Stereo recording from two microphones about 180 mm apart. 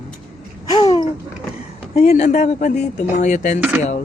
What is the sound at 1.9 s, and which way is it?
Speech, 35° left (ahead or behind).